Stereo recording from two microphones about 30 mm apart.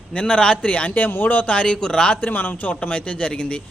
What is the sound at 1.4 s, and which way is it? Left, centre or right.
Speech, left.